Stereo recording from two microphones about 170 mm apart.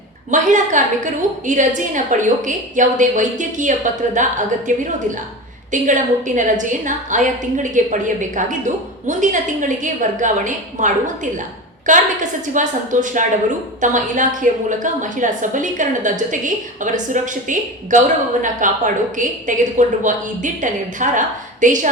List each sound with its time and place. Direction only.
0.3 s a woman's voice: 45° right (ahead or behind)
5.7 s a woman's voice: 50° right (ahead or behind)